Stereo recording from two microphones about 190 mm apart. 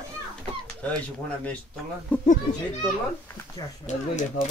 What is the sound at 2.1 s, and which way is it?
Speech, 10° left (ahead or behind).